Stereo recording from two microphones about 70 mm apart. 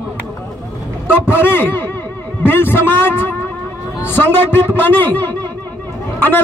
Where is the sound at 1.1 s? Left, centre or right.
Left.